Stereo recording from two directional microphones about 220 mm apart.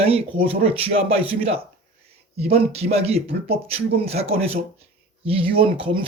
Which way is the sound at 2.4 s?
25° right (ahead or behind).